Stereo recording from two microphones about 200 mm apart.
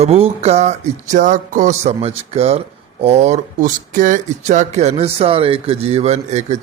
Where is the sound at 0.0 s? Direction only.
30° right (ahead or behind).